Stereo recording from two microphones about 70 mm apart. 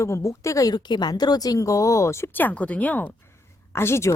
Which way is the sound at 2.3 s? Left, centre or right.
Left.